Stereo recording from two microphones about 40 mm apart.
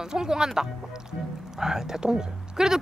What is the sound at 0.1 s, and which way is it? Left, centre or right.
Speech, centre.